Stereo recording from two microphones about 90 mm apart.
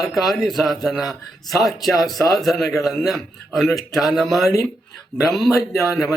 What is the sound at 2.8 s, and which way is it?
Speech, centre (ahead or behind).